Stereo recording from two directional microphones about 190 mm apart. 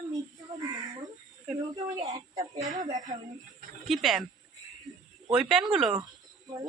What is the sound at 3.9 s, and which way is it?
Speech, centre (ahead or behind).